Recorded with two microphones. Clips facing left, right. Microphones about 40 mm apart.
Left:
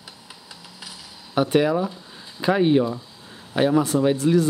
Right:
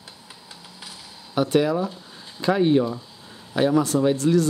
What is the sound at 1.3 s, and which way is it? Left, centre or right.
Speech, centre.